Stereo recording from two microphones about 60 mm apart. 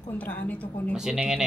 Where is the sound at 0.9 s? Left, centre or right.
Centre.